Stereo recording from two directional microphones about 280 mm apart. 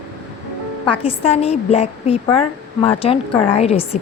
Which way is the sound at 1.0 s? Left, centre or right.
Left.